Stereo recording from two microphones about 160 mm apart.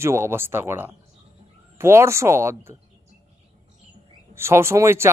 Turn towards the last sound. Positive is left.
turn(degrees=-15)  # may be behind; listen again after turning